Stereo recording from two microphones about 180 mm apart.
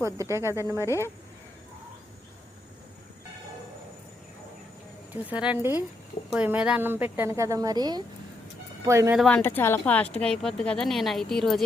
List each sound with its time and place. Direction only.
0.0 s speech: 15° right (ahead or behind)
0.9 s speech: 15° left (ahead or behind)
5.1 s speech: 10° right (ahead or behind)
9.1 s a woman's voice: 5° left (ahead or behind)